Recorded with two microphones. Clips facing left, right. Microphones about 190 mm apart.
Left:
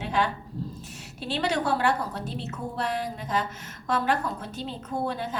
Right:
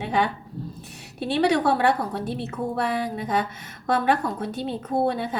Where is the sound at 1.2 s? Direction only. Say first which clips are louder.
Right 6 dB; 60° right (ahead or behind).